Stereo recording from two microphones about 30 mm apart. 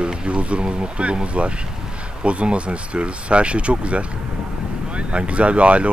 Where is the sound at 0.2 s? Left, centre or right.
Right.